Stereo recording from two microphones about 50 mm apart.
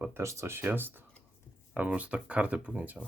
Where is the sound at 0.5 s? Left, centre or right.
Right.